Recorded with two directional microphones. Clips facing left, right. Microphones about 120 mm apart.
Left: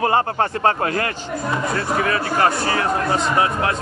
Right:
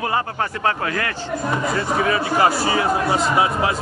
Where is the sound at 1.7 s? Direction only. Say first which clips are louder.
Right 1 dB; 15° right (ahead or behind).